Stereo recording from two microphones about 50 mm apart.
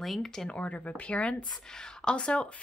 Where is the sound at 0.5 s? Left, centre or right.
Left.